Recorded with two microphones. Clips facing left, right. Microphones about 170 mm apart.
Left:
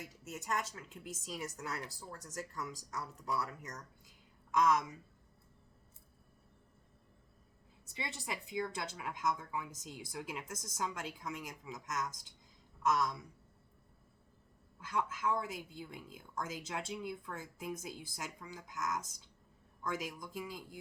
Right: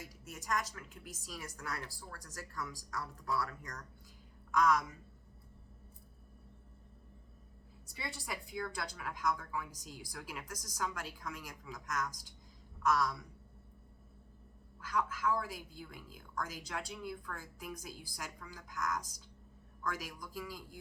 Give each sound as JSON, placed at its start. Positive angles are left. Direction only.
{"t": 0.0, "sound": "a woman's voice", "side_deg": 25}
{"t": 7.9, "sound": "a woman's voice", "side_deg": 20}
{"t": 14.8, "sound": "a woman's voice", "side_deg": 25}